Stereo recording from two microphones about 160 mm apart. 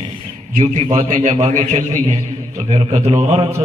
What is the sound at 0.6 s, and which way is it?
A man's voice, 40° right (ahead or behind).